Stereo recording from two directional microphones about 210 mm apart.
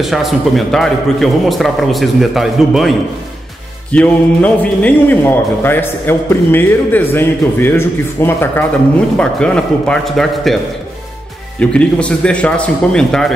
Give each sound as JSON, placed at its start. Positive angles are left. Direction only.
{"t": 0.0, "sound": "a man's voice", "side_deg": 0}
{"t": 3.9, "sound": "a man's voice", "side_deg": 5}
{"t": 11.7, "sound": "a man's voice", "side_deg": 5}